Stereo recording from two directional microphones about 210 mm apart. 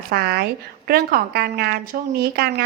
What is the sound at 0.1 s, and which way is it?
A woman's voice, 50° right (ahead or behind).